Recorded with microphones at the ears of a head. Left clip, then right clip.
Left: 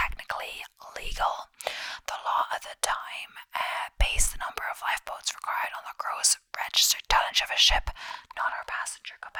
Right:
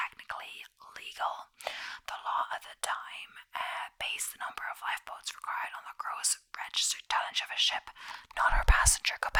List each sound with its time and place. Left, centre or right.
0.0 s whispering: left
8.6 s whispering: right